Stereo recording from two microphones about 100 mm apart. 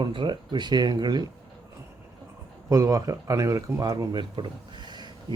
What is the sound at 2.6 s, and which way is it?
Speech, 35° right (ahead or behind).